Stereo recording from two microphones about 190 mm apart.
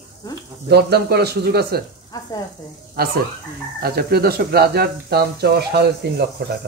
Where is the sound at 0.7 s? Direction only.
60° right (ahead or behind).